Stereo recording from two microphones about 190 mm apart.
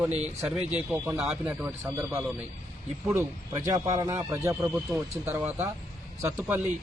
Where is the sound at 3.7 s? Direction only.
15° right (ahead or behind).